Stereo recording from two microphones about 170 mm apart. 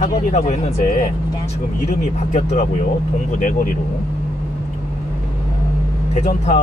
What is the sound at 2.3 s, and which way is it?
Speech, 45° left (ahead or behind).